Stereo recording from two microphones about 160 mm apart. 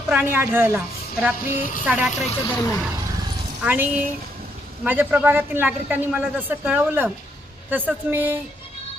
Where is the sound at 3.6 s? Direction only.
10° right (ahead or behind).